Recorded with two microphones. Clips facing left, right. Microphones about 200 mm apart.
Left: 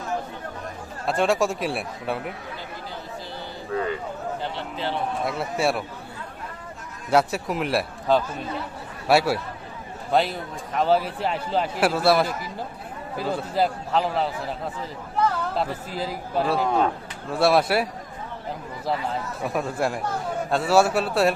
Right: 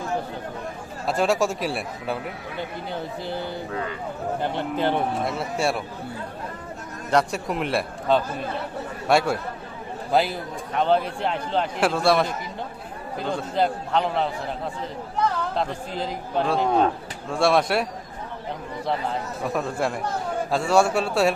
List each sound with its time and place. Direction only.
1.0 s a man's voice: centre (ahead or behind)
4.4 s a man's voice: 50° right (ahead or behind)
5.2 s a man's voice: centre (ahead or behind)
7.1 s a man's voice: 5° left (ahead or behind)
15.5 s a man's voice: 5° left (ahead or behind)
18.9 s a man's voice: centre (ahead or behind)